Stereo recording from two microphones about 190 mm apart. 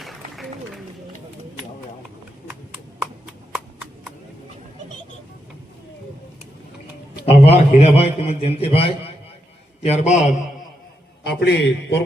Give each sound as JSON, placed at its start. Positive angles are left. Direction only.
{"t": 2.5, "sound": "a sound", "side_deg": -10}
{"t": 7.3, "sound": "a man's voice", "side_deg": 30}
{"t": 11.2, "sound": "a man's voice", "side_deg": 60}